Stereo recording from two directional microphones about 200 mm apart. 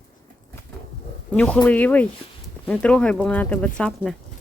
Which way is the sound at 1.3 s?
5° left (ahead or behind).